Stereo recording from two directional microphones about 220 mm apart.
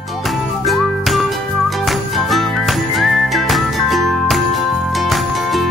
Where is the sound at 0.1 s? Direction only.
Centre (ahead or behind).